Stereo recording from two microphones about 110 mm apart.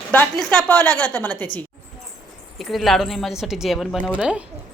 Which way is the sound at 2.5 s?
Centre (ahead or behind).